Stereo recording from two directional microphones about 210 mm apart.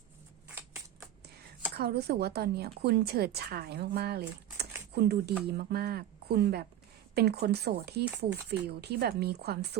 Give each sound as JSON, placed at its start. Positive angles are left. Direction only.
{"t": 1.7, "sound": "speech", "side_deg": -50}